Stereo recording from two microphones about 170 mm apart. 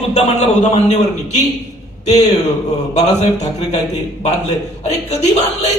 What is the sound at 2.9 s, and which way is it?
Speech, 40° left (ahead or behind).